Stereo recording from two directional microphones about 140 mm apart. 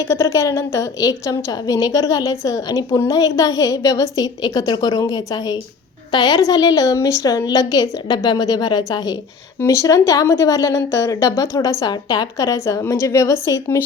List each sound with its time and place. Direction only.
0.1 s a woman's voice: 20° left (ahead or behind)